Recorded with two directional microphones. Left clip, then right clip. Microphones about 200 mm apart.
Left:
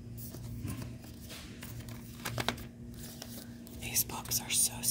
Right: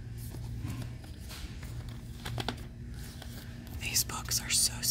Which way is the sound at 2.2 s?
30° left (ahead or behind).